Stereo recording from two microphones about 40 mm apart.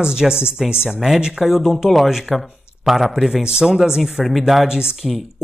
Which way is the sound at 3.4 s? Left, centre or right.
Centre.